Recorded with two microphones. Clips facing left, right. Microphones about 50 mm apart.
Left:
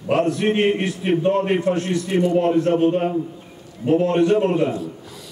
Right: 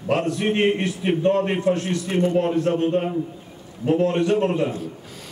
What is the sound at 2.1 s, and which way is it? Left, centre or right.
Speech, right.